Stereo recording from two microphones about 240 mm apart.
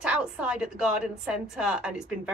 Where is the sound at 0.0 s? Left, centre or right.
Centre.